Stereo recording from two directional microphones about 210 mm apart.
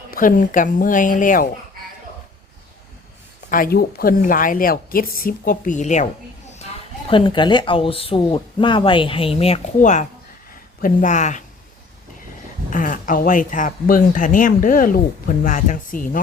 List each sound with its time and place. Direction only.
0.1 s speech: 40° left (ahead or behind)
3.5 s a woman's voice: 45° left (ahead or behind)
7.1 s speech: 25° left (ahead or behind)
12.7 s speech: 40° left (ahead or behind)